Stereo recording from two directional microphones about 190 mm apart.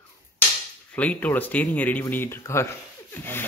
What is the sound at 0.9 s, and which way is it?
Speech, 10° left (ahead or behind).